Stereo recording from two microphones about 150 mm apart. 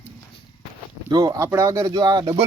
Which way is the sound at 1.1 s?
25° right (ahead or behind).